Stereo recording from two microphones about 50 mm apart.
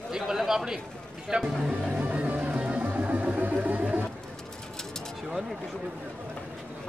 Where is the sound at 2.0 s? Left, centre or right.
Right.